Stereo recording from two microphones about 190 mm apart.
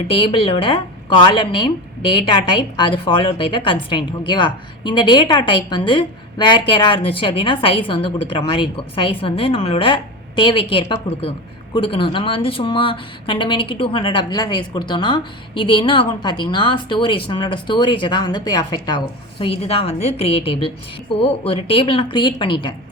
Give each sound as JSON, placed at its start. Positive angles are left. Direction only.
{"t": 0.1, "sound": "a woman's voice", "side_deg": 30}